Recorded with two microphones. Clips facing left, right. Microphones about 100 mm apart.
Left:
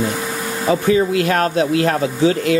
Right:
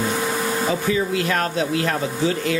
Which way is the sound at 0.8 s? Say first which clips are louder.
Left 6 dB; 60° left (ahead or behind).